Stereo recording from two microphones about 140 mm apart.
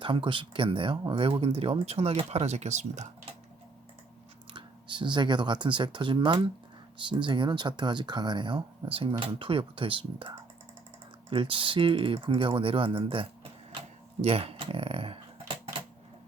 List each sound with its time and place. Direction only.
0.0 s speech: 35° right (ahead or behind); by 3.1 s 55° right (ahead or behind)
4.5 s speech: 35° right (ahead or behind)